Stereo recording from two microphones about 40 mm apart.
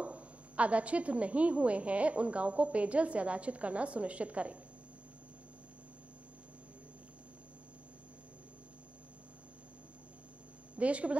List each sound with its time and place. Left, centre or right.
0.0 s a woman's voice: right
10.8 s a woman's voice: right